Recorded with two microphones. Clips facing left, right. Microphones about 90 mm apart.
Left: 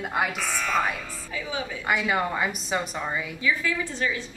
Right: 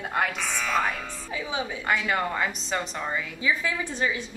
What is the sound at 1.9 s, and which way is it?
A woman's voice, 5° left (ahead or behind).